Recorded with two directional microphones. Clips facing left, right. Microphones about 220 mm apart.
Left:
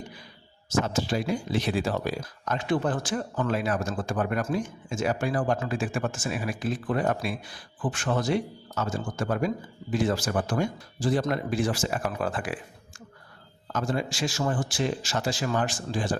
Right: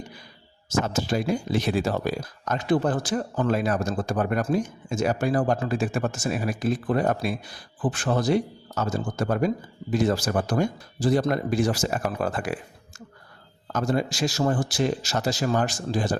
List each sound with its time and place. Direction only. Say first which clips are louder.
0.7 s speech: right 1 dB; 45° right (ahead or behind)
13.7 s speech: right 4 dB; 40° right (ahead or behind)